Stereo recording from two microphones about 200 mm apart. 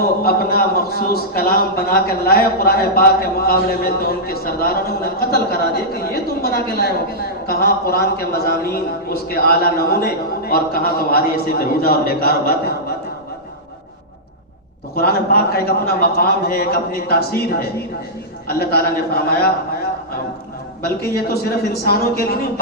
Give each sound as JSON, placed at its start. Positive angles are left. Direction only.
{"t": 0.3, "sound": "a man's voice", "side_deg": 50}
{"t": 14.9, "sound": "a man's voice", "side_deg": 50}
{"t": 21.2, "sound": "a man's voice", "side_deg": 50}